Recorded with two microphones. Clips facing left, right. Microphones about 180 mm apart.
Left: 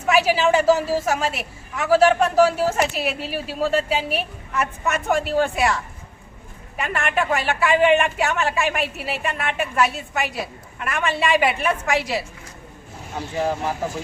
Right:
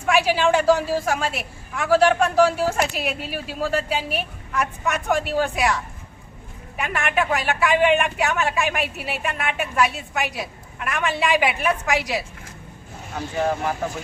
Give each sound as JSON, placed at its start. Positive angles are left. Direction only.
{"t": 0.0, "sound": "a woman's voice", "side_deg": 5}
{"t": 13.1, "sound": "speech", "side_deg": 30}